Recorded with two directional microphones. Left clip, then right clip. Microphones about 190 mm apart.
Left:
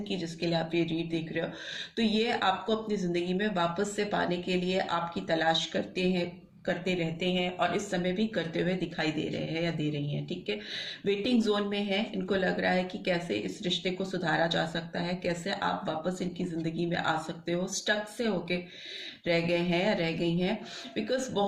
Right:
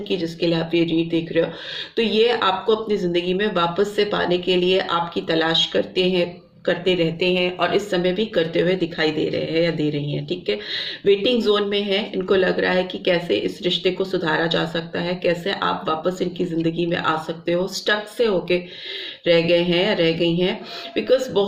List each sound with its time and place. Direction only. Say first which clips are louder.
0.1 s speech: right 10 dB; 35° right (ahead or behind)